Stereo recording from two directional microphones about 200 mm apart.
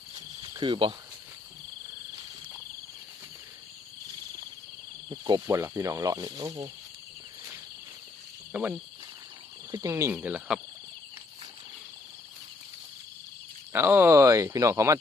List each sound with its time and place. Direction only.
0.1 s cricket: 20° right (ahead or behind)
5.0 s speech: 20° right (ahead or behind)
8.5 s speech: 10° right (ahead or behind)
13.7 s speech: 10° right (ahead or behind)